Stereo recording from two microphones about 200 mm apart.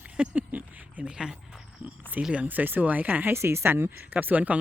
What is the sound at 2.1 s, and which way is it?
Speech, 5° right (ahead or behind).